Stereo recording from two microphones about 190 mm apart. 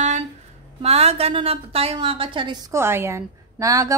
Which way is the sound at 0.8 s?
35° right (ahead or behind).